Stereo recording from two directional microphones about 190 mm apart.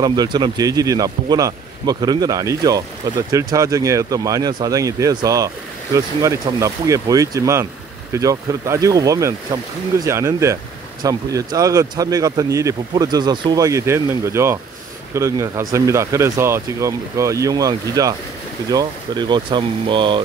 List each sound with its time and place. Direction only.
0.0 s speech: 20° right (ahead or behind)